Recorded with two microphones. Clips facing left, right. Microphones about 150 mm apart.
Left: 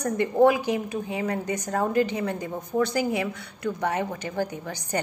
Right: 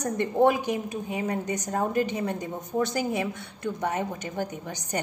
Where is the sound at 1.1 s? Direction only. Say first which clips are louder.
Even; 20° right (ahead or behind).